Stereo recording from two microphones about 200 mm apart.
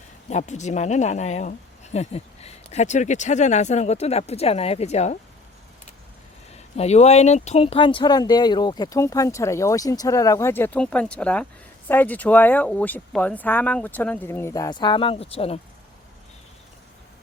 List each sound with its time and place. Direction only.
0.3 s a woman's voice: 35° left (ahead or behind)
6.7 s speech: 35° left (ahead or behind)